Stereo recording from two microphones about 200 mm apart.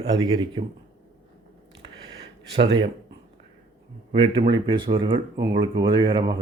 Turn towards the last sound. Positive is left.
turn(degrees=-20)  # may be behind; listen again after turning